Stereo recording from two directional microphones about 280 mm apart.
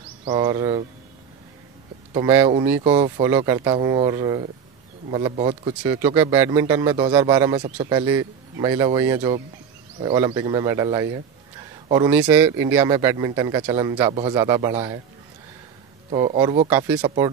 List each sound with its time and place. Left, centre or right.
0.2 s speech: centre
2.1 s speech: centre
16.1 s speech: centre